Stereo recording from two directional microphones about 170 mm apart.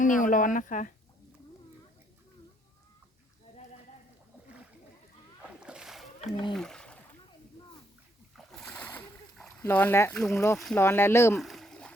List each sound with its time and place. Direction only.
0.0 s speech: 50° left (ahead or behind)
5.4 s splash: 5° right (ahead or behind)
6.5 s a sound: 5° left (ahead or behind)
8.4 s splash: 5° left (ahead or behind)
10.8 s speech: 15° left (ahead or behind)
11.3 s rowboat: centre (ahead or behind)